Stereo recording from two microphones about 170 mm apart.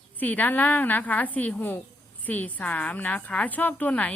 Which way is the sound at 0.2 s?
10° left (ahead or behind).